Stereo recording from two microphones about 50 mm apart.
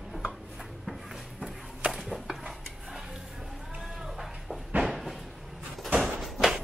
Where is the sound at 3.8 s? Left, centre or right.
Centre.